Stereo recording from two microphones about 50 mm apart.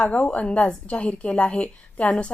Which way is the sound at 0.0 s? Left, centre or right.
Left.